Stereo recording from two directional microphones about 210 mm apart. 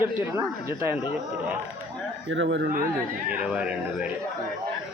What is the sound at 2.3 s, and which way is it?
Speech, 60° right (ahead or behind).